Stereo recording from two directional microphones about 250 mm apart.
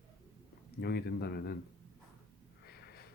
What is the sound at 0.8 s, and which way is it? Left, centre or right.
Speech, left.